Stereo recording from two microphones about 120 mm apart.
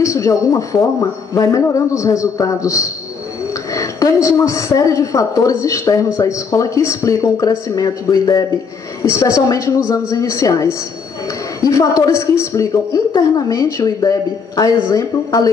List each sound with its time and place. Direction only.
0.0 s a woman's voice: 25° left (ahead or behind)
9.5 s a woman's voice: 25° left (ahead or behind)